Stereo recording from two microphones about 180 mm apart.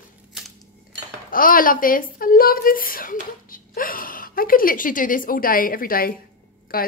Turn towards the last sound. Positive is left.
turn(degrees=55)  # may be behind; listen again after turning